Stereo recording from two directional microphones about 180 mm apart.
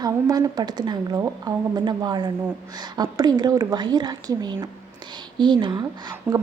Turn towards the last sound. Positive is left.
turn(degrees=-25)  # may be behind; listen again after turning